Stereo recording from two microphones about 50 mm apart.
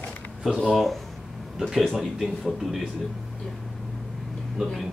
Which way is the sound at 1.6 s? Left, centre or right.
Centre.